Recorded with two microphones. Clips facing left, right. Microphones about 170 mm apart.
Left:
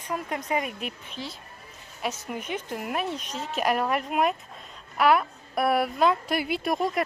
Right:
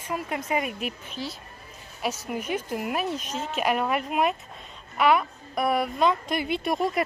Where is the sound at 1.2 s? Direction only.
20° left (ahead or behind).